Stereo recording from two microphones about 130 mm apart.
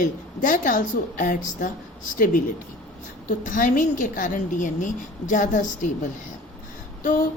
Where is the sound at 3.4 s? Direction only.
85° left.